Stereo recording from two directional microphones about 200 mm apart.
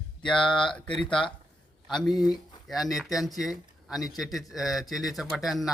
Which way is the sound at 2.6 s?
Centre (ahead or behind).